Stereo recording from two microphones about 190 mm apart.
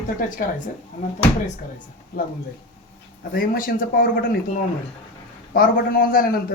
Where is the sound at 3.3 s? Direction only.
50° left (ahead or behind).